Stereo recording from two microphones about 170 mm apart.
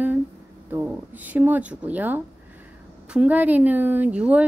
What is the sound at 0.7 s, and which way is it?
A woman's voice, 10° right (ahead or behind).